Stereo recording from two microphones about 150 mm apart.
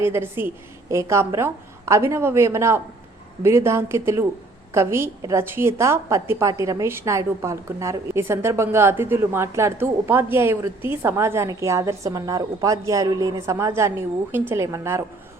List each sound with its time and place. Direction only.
0.0 s a woman's voice: 15° right (ahead or behind)